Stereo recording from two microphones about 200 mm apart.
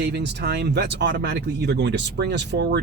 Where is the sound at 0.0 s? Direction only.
55° right (ahead or behind).